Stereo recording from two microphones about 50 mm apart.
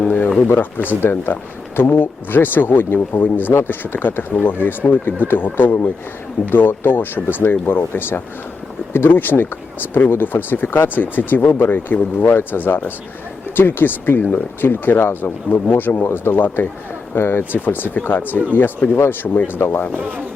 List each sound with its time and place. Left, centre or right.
0.0 s speech: left